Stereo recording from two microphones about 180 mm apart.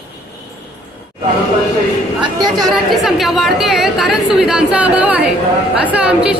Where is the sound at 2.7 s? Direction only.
Centre (ahead or behind).